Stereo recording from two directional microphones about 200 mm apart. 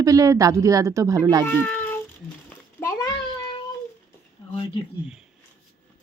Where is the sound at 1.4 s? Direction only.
10° left (ahead or behind).